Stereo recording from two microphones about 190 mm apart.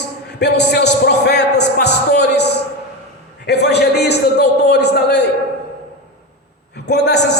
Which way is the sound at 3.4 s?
60° left (ahead or behind).